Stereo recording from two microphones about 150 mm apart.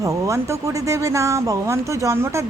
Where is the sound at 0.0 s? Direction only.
20° right (ahead or behind).